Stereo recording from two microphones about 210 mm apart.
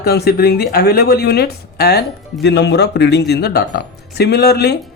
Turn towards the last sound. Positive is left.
turn(degrees=50)  # may be behind; listen again after turning